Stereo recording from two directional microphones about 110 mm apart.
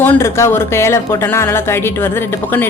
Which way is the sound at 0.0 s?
20° left (ahead or behind).